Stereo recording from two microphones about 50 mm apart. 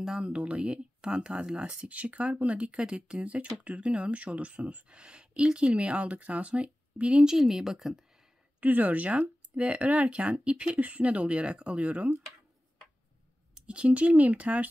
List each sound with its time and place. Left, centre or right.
0.2 s speech: right
7.2 s speech: centre
8.5 s speech: right
13.6 s speech: right